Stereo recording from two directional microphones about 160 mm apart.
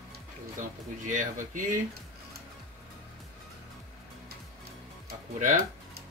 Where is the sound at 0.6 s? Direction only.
55° right (ahead or behind).